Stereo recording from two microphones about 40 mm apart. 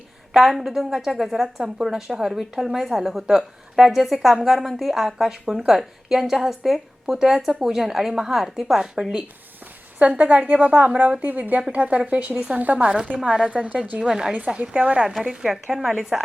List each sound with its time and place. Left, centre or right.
0.3 s a woman's voice: centre
10.0 s speech: right
13.2 s a woman's voice: right
14.1 s a woman's voice: centre
14.6 s speech: right
15.0 s a woman's voice: centre